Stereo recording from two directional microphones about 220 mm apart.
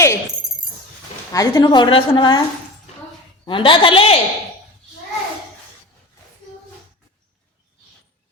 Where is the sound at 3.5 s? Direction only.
20° left (ahead or behind).